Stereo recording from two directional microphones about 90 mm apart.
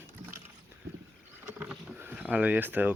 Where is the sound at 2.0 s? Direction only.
20° right (ahead or behind).